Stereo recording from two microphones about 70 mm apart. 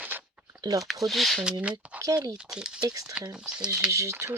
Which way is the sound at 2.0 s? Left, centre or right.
Right.